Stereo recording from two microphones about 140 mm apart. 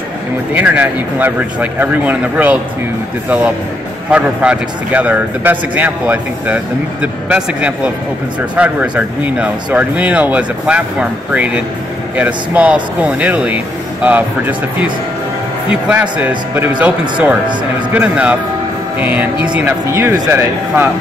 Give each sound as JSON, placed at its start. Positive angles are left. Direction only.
{"t": 0.6, "sound": "speech", "side_deg": -10}
{"t": 17.9, "sound": "speech", "side_deg": -10}